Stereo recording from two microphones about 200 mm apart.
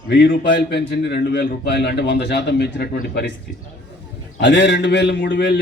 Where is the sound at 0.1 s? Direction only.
60° left (ahead or behind).